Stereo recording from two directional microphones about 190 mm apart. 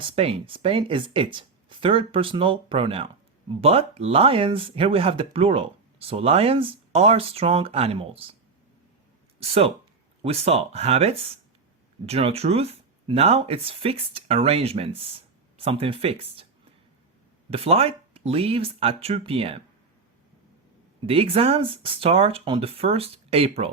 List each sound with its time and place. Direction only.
0.0 s speech: 30° right (ahead or behind)
9.4 s speech: 30° right (ahead or behind)
17.5 s speech: 30° right (ahead or behind)
21.1 s speech: 30° right (ahead or behind)